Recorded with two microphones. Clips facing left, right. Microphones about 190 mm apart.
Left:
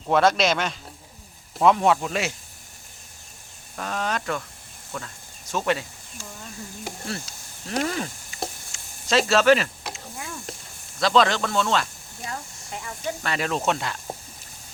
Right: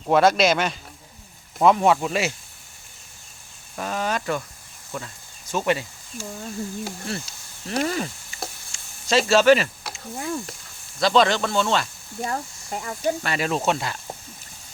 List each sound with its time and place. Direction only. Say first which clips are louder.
0.1 s speech: right 2 dB; 5° right (ahead or behind)
3.8 s speech: right 2 dB; 5° right (ahead or behind)
7.1 s speech: right 2 dB; centre (ahead or behind)
8.7 s snake: right 1 dB; centre (ahead or behind)
10.2 s speech: right 12 dB; 40° right (ahead or behind)
11.0 s speech: right 1 dB; centre (ahead or behind)
12.2 s speech: right 7 dB; 45° right (ahead or behind)
13.2 s speech: left 3 dB; 5° right (ahead or behind)